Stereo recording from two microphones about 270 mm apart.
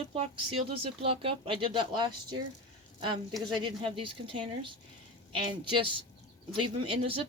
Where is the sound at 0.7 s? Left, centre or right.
Right.